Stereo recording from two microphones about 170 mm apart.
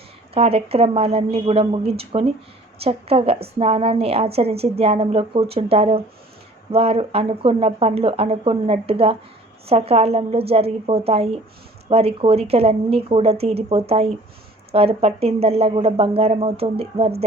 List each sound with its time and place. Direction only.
0.3 s speech: 35° right (ahead or behind)